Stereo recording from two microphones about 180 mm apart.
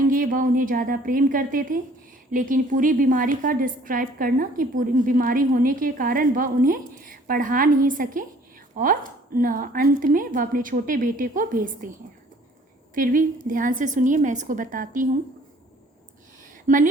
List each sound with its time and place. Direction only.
0.1 s a woman's voice: 50° right (ahead or behind)
16.6 s a woman's voice: 45° right (ahead or behind)